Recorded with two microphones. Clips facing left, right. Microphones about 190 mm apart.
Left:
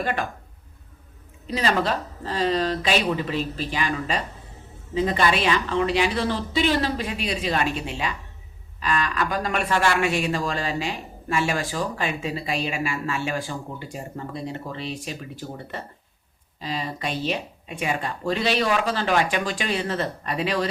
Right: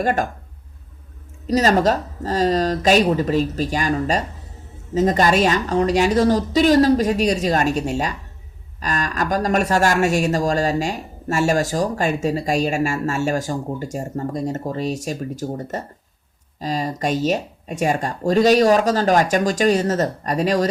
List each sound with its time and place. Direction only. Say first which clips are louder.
0.0 s speech: right 6 dB; 45° right (ahead or behind)
1.5 s speech: right 7 dB; 40° right (ahead or behind)